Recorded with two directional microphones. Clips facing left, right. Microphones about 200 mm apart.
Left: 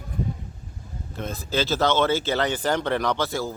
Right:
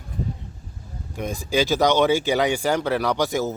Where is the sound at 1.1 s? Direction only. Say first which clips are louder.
Right 4 dB; 15° right (ahead or behind).